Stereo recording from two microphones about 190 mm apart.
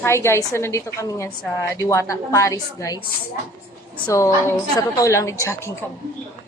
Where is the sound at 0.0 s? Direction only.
15° left (ahead or behind).